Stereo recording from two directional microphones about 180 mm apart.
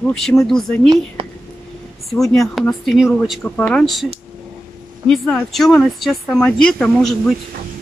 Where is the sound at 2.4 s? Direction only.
Centre (ahead or behind).